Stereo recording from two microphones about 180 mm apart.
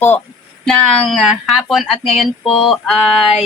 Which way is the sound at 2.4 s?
30° left (ahead or behind).